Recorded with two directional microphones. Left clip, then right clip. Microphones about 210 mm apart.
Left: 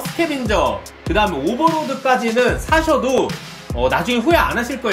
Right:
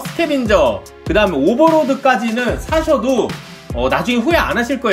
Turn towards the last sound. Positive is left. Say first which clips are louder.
# right 1 dB
turn(degrees=-5)  # may be behind; listen again after turning